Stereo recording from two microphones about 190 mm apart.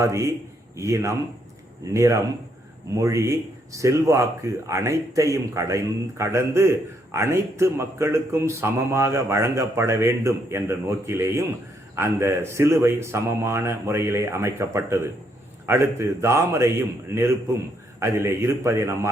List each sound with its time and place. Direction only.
0.0 s speech: 15° right (ahead or behind)